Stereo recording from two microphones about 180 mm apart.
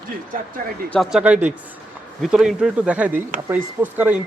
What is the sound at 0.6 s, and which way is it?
Speech, 50° right (ahead or behind).